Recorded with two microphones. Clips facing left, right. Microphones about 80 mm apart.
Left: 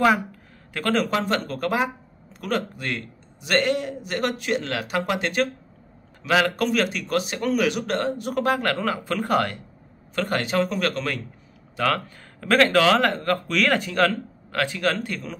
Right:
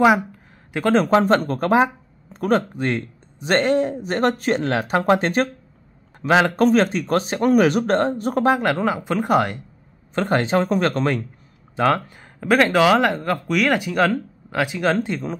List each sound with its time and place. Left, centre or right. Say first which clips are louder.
0.7 s speech: right 5 dB; centre
1.0 s a man's voice: right 8 dB; right
8.6 s speech: right 4 dB; centre
10.1 s speech: right 4 dB; right
12.4 s speech: right 2 dB; centre
15.0 s speech: right 6 dB; right